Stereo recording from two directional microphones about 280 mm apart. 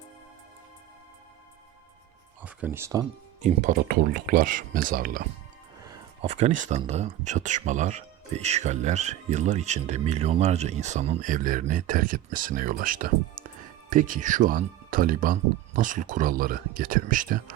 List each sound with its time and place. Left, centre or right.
2.4 s speech: centre
3.4 s speech: right
6.2 s speech: right